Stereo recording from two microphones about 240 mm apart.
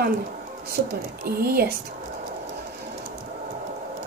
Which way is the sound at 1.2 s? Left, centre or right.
Right.